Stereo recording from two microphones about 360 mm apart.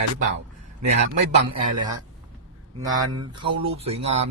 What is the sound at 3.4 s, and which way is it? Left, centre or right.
Speech, centre.